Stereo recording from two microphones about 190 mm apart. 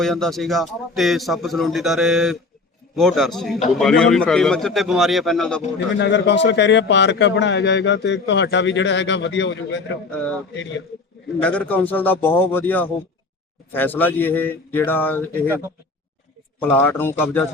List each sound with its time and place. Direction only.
0.0 s a man's voice: centre (ahead or behind)
6.0 s a man's voice: 65° left (ahead or behind)
10.1 s speech: 5° left (ahead or behind)
10.5 s a man's voice: 70° left (ahead or behind)
11.4 s speech: 5° left (ahead or behind)
16.6 s speech: 10° left (ahead or behind)